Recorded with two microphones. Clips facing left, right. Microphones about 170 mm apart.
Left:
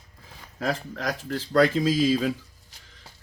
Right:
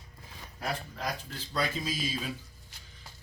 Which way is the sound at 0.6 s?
90° left.